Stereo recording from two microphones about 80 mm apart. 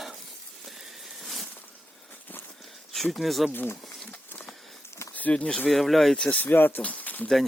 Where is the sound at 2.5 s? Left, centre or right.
Centre.